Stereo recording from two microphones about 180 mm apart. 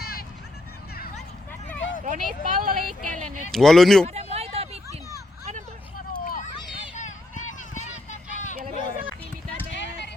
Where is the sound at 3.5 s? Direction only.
Centre (ahead or behind).